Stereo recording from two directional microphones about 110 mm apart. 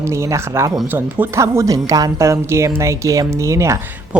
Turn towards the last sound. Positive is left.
turn(degrees=-25)  # may be behind; listen again after turning